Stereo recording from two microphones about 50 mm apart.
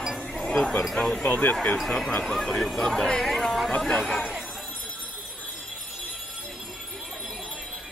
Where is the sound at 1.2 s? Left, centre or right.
Left.